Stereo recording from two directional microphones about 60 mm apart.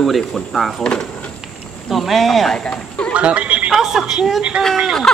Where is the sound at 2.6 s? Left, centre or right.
Centre.